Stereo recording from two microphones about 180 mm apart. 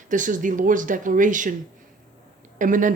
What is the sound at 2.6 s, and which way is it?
Speech, 45° right (ahead or behind).